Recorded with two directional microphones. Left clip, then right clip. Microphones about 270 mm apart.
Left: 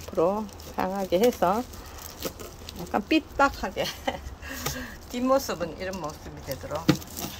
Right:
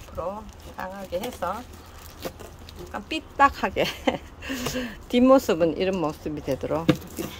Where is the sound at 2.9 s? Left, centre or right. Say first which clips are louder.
Left 7 dB; centre.